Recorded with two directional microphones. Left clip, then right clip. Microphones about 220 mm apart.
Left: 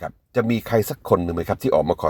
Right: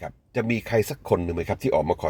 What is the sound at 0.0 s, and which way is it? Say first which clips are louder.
Speech: left 5 dB; 20° left (ahead or behind).